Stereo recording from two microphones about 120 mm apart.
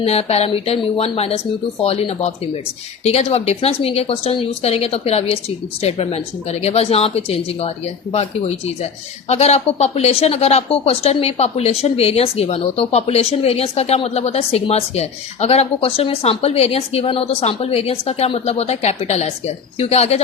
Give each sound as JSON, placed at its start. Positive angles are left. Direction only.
{"t": 0.0, "sound": "speech", "side_deg": 60}